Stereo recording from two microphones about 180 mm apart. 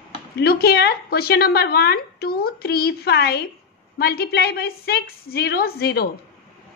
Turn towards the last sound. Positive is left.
turn(degrees=60)  # may be behind; listen again after turning